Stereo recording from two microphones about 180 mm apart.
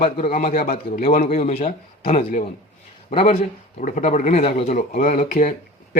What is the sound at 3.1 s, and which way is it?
Speech, 35° left (ahead or behind).